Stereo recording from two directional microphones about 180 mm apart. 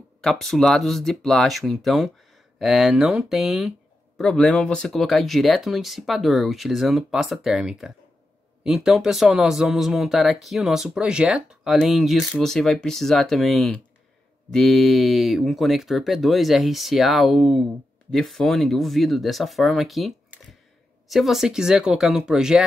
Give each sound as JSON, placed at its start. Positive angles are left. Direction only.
{"t": 0.2, "sound": "speech", "side_deg": 0}